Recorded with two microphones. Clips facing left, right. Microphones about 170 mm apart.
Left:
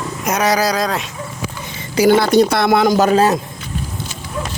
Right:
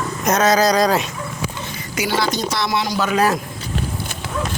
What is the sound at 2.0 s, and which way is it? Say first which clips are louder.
Speech: left 10 dB; 55° left (ahead or behind).